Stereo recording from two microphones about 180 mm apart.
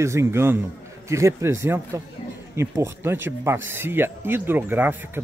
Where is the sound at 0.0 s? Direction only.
15° right (ahead or behind).